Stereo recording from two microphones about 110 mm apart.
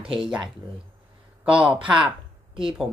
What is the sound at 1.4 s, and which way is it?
Speech, 10° right (ahead or behind).